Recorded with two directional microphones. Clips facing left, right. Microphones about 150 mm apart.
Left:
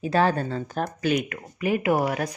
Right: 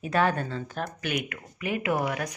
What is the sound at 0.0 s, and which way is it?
Speech, 30° left (ahead or behind).